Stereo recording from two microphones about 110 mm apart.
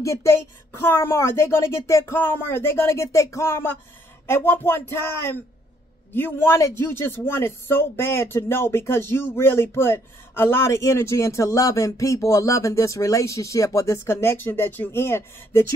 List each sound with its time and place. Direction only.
0.0 s speech: 25° left (ahead or behind)